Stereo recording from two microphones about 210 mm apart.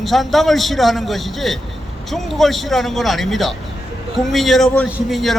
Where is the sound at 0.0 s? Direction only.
Centre (ahead or behind).